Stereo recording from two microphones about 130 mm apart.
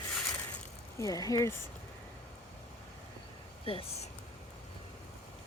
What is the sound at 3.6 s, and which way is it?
Speech, 45° left (ahead or behind).